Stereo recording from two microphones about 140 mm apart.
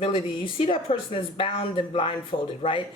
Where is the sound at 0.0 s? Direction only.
40° left (ahead or behind).